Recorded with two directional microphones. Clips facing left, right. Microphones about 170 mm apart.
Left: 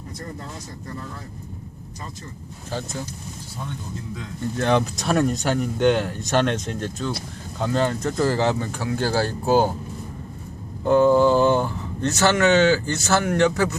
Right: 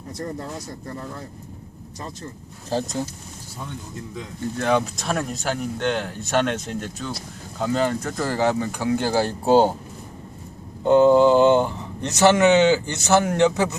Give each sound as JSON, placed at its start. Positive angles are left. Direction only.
{"t": 2.7, "sound": "speech", "side_deg": -35}
{"t": 4.6, "sound": "speech", "side_deg": 0}
{"t": 10.8, "sound": "speech", "side_deg": -20}